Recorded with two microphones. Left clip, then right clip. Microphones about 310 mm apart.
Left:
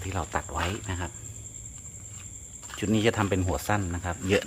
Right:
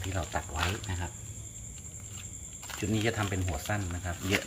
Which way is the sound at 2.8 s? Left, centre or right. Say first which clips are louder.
Left 6 dB; centre.